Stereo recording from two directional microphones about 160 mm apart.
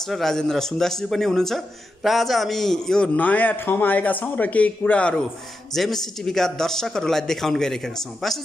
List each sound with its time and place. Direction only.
0.1 s a man's voice: centre (ahead or behind)